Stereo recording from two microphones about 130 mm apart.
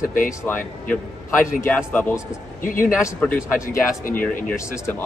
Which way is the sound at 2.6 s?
90° left.